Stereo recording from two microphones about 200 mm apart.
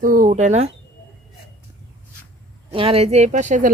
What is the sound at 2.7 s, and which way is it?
Speech, 30° right (ahead or behind).